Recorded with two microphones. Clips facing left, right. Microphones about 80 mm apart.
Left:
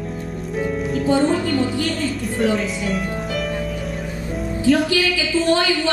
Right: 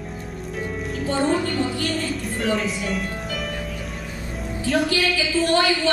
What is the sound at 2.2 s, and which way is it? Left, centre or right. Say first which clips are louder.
Speech: left 5 dB; centre.